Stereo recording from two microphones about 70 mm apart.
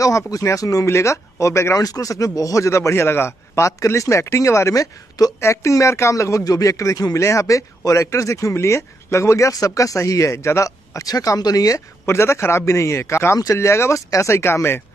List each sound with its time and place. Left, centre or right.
0.0 s speech: left
0.8 s speech: left
1.9 s speech: left